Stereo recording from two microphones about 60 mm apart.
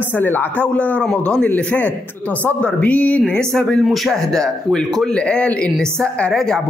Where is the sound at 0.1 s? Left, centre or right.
Left.